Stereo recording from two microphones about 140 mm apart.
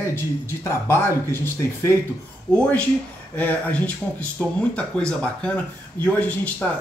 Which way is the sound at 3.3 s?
10° left (ahead or behind).